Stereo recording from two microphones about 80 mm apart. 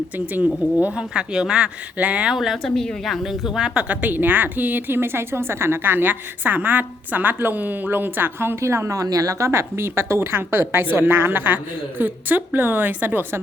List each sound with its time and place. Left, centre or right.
0.3 s a woman's voice: centre
2.3 s a woman's voice: centre; by 9.5 s right
9.5 s a woman's voice: right